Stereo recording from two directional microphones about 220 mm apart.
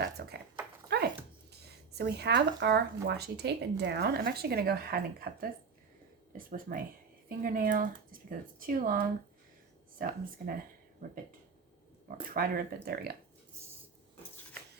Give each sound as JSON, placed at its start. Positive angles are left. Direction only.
{"t": 0.2, "sound": "speech", "side_deg": -45}
{"t": 0.9, "sound": "a sound", "side_deg": -50}
{"t": 1.6, "sound": "speech", "side_deg": -45}